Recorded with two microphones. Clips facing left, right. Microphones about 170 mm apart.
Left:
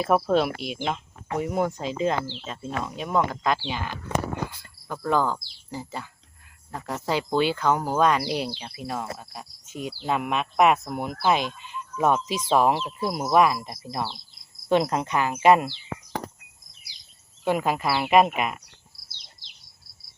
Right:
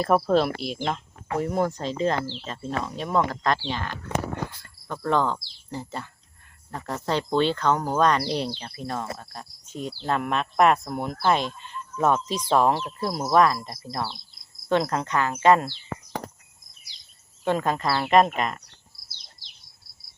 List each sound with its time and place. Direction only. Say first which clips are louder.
0.0 s speech: right 1 dB; 5° left (ahead or behind)
17.4 s speech: even; 10° left (ahead or behind)